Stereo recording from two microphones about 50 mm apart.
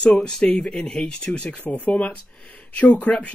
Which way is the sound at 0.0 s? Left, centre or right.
Centre.